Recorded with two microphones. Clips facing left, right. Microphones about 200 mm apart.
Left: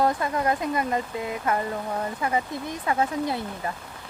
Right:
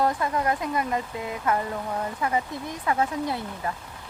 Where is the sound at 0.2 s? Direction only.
25° left (ahead or behind).